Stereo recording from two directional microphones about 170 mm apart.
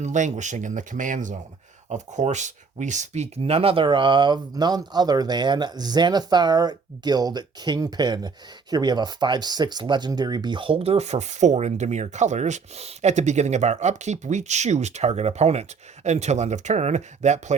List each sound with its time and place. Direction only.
0.0 s speech: 45° right (ahead or behind)